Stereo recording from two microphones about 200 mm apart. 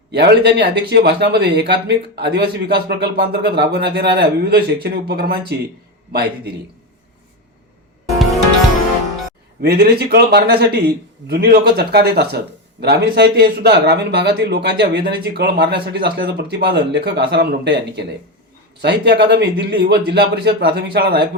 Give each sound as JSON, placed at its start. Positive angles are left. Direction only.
{"t": 0.1, "sound": "a man's voice", "side_deg": -55}
{"t": 9.6, "sound": "a man's voice", "side_deg": -55}